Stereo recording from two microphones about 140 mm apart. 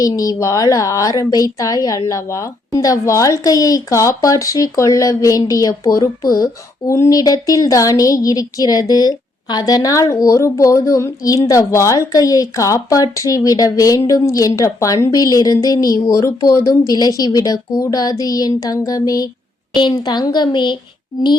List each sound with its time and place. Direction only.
0.0 s a woman's voice: 25° left (ahead or behind)